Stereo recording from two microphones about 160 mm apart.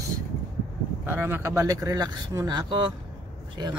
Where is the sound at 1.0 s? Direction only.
15° right (ahead or behind).